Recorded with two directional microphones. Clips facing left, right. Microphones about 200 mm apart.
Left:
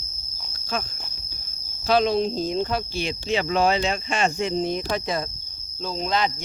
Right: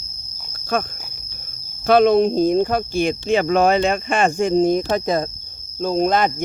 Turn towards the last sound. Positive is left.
turn(degrees=-50)  # may be behind; listen again after turning